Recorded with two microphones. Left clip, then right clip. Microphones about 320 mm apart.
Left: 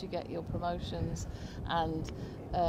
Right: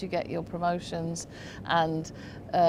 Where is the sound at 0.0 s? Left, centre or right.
Right.